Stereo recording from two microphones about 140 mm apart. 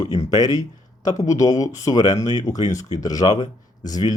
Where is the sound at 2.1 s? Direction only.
55° left (ahead or behind).